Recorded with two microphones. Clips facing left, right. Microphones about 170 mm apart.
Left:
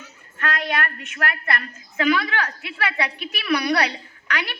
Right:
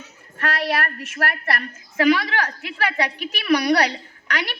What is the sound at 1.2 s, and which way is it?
A woman's voice, 40° right (ahead or behind).